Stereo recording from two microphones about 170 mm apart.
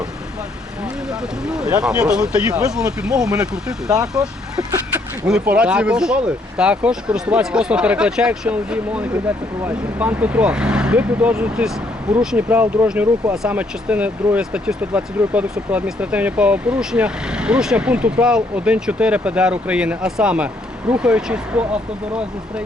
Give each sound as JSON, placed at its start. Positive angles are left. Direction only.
{"t": 1.5, "sound": "speech", "side_deg": -5}
{"t": 2.5, "sound": "speech", "side_deg": -20}
{"t": 3.0, "sound": "speech", "side_deg": -5}